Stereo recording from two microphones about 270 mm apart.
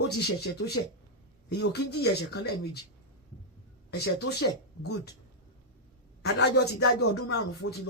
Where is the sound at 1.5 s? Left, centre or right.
Left.